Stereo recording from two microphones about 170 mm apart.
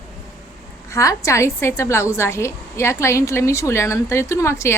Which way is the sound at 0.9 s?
20° left (ahead or behind).